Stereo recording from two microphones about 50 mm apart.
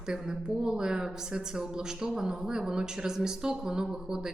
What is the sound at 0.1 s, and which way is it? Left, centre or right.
Speech, centre.